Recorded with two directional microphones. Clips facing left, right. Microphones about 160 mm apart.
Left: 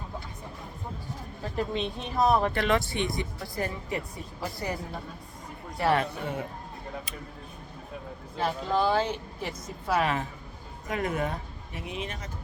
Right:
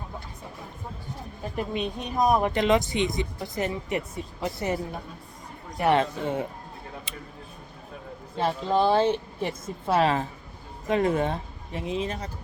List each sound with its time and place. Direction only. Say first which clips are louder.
1.5 s speech: right 1 dB; 15° right (ahead or behind)
8.4 s speech: right 3 dB; 25° right (ahead or behind)